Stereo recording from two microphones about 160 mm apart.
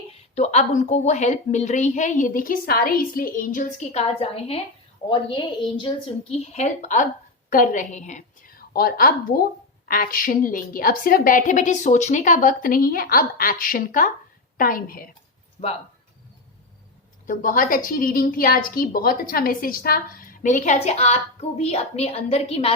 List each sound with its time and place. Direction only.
0.1 s a woman's voice: 45° left (ahead or behind); by 15.0 s 65° left (ahead or behind)
17.2 s a woman's voice: 60° left (ahead or behind); by 22.7 s 40° left (ahead or behind)